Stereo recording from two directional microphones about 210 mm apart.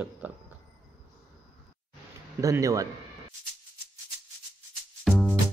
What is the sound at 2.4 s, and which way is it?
Speech, 15° right (ahead or behind).